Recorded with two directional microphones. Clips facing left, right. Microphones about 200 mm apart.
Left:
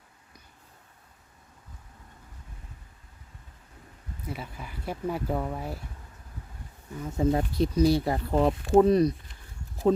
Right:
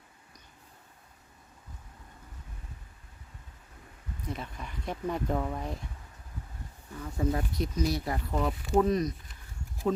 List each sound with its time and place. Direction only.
4.3 s speech: 5° left (ahead or behind)
7.0 s speech: 25° left (ahead or behind)